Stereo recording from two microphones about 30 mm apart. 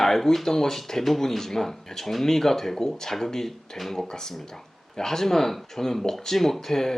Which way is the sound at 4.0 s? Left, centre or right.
Left.